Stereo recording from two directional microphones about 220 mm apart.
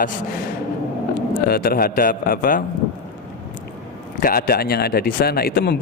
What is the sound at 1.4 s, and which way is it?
A man's voice, 45° left (ahead or behind).